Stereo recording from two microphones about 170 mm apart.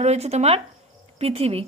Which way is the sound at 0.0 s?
40° right (ahead or behind).